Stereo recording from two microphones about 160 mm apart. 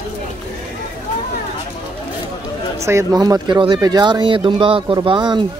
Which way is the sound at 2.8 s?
20° right (ahead or behind).